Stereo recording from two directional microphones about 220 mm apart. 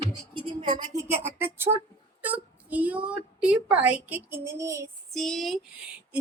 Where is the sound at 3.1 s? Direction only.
5° right (ahead or behind).